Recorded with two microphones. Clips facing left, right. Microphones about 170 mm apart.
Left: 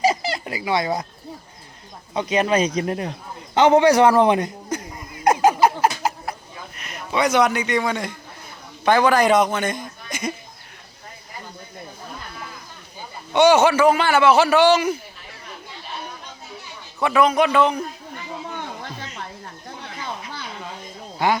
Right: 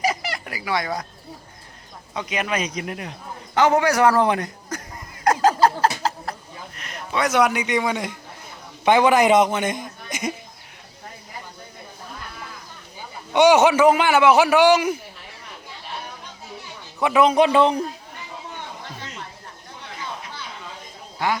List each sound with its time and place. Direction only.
0.0 s a sound: 25° left (ahead or behind)
2.1 s a man's voice: 30° left (ahead or behind)
5.2 s a sound: 20° left (ahead or behind)
7.3 s a man's voice: 5° right (ahead or behind)
8.8 s a man's voice: 20° right (ahead or behind)
13.3 s a man's voice: 15° right (ahead or behind)
17.0 s a man's voice: 20° right (ahead or behind)